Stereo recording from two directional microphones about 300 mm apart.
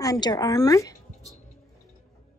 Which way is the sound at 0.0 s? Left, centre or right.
Centre.